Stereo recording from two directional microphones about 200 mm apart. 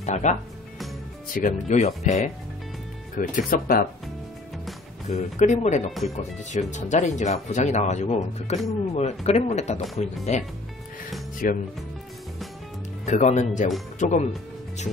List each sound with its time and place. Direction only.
0.0 s speech: 35° left (ahead or behind)
3.2 s speech: 45° left (ahead or behind)
5.0 s speech: 35° left (ahead or behind)
11.4 s speech: 45° left (ahead or behind)
13.0 s speech: 35° left (ahead or behind)